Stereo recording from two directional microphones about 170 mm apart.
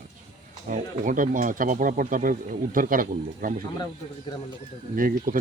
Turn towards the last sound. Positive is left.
turn(degrees=-55)  # may be behind; listen again after turning